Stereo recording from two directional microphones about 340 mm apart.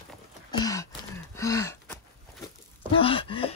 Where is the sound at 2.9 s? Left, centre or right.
Centre.